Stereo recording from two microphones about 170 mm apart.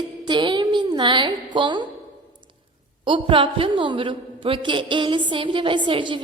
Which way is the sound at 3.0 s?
30° right (ahead or behind).